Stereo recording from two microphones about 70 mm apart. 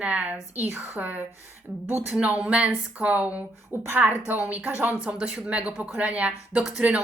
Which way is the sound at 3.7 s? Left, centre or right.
Right.